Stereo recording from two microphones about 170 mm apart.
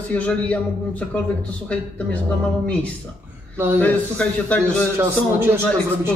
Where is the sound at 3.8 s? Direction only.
5° left (ahead or behind).